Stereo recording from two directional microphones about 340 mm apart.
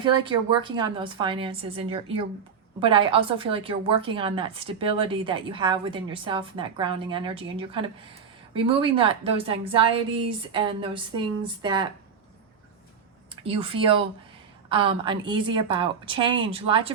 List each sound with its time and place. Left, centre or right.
0.0 s a woman's voice: centre
13.3 s a woman's voice: centre